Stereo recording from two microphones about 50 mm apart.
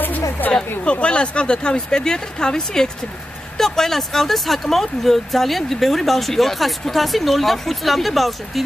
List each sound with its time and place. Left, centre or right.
0.5 s speech: left; by 8.6 s centre